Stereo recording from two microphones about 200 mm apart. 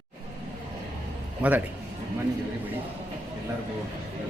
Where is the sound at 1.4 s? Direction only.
5° right (ahead or behind).